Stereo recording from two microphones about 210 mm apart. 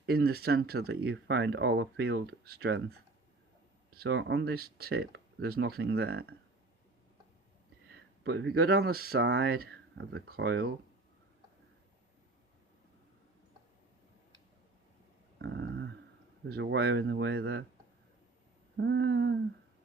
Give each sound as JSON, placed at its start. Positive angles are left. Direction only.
{"t": 0.0, "sound": "speech", "side_deg": -50}
{"t": 3.9, "sound": "speech", "side_deg": -50}
{"t": 8.2, "sound": "speech", "side_deg": -55}
{"t": 10.0, "sound": "speech", "side_deg": -65}
{"t": 10.2, "sound": "speech", "side_deg": -50}
{"t": 15.4, "sound": "a sound", "side_deg": -60}
{"t": 16.5, "sound": "speech", "side_deg": -50}
{"t": 18.8, "sound": "a sound", "side_deg": -60}